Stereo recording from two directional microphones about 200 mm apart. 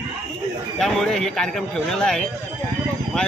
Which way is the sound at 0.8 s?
Centre (ahead or behind).